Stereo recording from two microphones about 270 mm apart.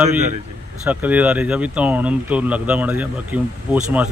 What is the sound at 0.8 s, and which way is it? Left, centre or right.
Speech, centre.